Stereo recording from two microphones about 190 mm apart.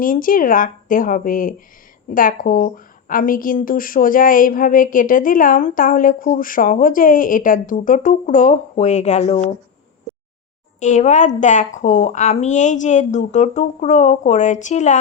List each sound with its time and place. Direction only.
0.0 s a woman's voice: 45° left (ahead or behind)
10.8 s a woman's voice: 40° left (ahead or behind)